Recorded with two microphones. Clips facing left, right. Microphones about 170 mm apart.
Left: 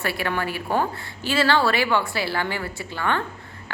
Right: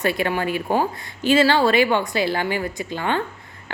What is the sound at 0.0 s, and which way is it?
A woman's voice, 20° right (ahead or behind).